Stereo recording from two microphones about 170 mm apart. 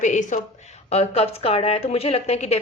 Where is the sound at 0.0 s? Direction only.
45° left (ahead or behind).